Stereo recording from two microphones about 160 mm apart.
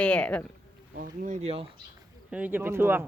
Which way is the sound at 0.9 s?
60° right (ahead or behind).